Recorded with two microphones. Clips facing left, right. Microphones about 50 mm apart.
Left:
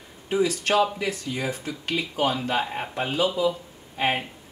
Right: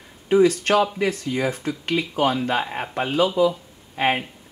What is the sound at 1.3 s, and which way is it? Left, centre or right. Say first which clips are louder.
Speech: right 5 dB; centre.